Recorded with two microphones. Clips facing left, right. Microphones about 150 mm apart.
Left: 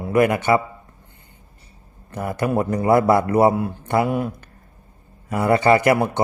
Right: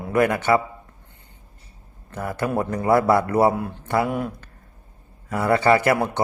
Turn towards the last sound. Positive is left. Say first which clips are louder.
# left 2 dB
turn(degrees=15)  # may be behind; listen again after turning